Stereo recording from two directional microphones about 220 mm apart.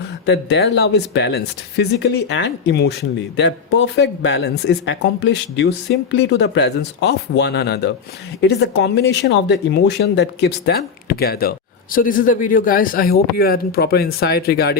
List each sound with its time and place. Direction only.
0.3 s speech: 50° left (ahead or behind)